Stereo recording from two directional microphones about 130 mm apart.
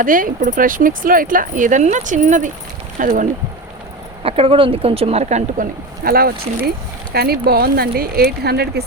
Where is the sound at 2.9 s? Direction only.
90° right.